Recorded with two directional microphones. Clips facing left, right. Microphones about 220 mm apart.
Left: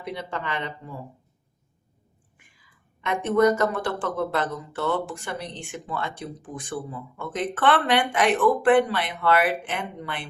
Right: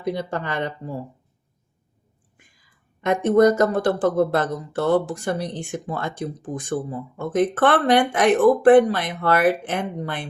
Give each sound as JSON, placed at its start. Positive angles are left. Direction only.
{"t": 0.0, "sound": "speech", "side_deg": -40}
{"t": 3.0, "sound": "speech", "side_deg": -40}